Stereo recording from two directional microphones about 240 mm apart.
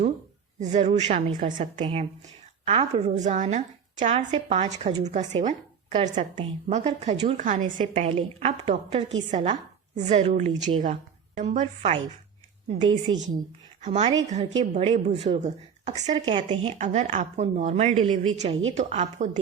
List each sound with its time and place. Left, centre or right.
0.7 s a woman's voice: right
4.9 s a woman's voice: centre
5.5 s a woman's voice: right